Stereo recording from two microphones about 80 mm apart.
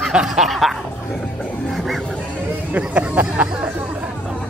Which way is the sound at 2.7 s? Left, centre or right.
Centre.